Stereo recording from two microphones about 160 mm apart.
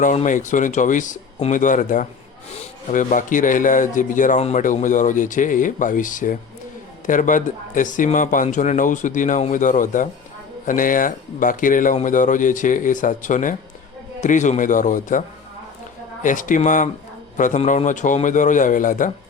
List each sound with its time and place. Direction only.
0.0 s speech: 50° left (ahead or behind)
16.2 s speech: 55° left (ahead or behind)